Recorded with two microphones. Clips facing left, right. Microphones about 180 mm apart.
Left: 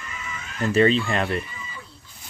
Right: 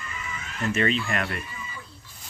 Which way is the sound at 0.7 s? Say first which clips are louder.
Left 7 dB; 30° left (ahead or behind).